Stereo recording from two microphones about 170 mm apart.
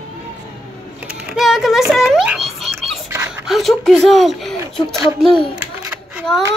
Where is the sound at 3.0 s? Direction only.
15° right (ahead or behind).